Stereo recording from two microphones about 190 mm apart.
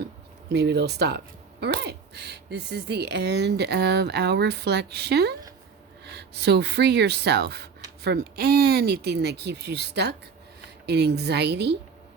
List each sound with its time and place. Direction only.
0.5 s speech: 60° right (ahead or behind)